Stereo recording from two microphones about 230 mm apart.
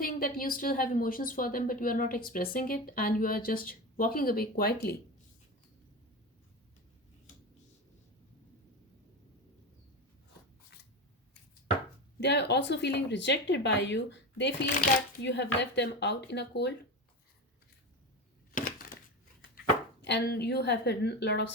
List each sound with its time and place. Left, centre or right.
0.0 s a woman's voice: left
12.2 s speech: left
14.7 s a woman's voice: left
15.2 s speech: left
18.5 s a sound: left
20.0 s speech: left